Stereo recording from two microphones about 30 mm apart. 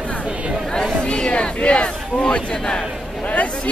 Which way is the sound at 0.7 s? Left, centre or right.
Left.